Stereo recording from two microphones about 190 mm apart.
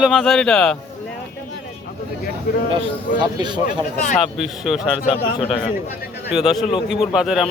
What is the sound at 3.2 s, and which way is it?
Speech, 25° right (ahead or behind).